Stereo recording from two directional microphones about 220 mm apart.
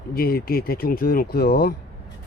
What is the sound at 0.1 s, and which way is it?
Speech, 45° left (ahead or behind).